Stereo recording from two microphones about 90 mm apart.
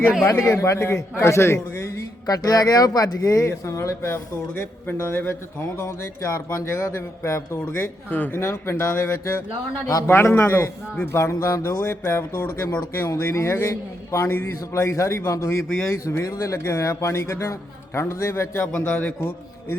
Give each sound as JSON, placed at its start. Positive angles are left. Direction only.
{"t": 0.3, "sound": "speech", "side_deg": 30}
{"t": 2.2, "sound": "speech", "side_deg": 45}
{"t": 7.7, "sound": "speech", "side_deg": 20}
{"t": 18.6, "sound": "speech", "side_deg": 15}